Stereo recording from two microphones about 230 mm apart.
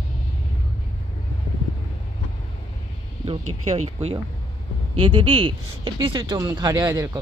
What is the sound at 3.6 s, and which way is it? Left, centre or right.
Speech, right.